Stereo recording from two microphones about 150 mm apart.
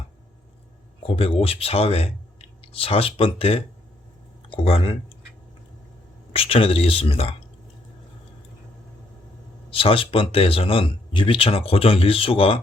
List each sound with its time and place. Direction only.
1.0 s speech: 40° left (ahead or behind)
6.3 s speech: 40° left (ahead or behind)
9.6 s speech: 40° left (ahead or behind)